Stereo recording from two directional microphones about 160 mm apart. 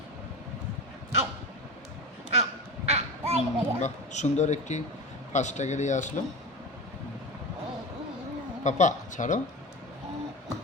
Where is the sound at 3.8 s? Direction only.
45° left (ahead or behind).